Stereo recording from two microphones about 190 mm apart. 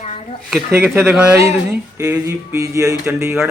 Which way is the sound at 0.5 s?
10° right (ahead or behind).